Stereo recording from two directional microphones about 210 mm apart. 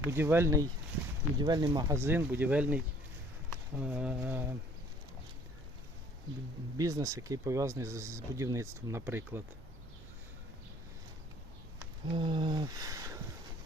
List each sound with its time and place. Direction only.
0.0 s speech: 10° right (ahead or behind)
6.7 s speech: 15° right (ahead or behind)
12.0 s a sound: 25° right (ahead or behind)